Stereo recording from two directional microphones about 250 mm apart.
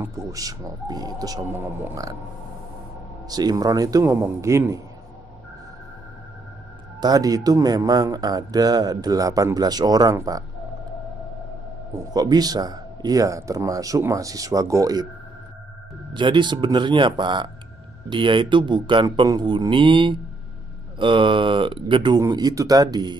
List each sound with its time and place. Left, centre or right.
0.0 s speech: centre
3.3 s speech: centre
7.0 s speech: centre
12.1 s speech: centre
16.1 s speech: centre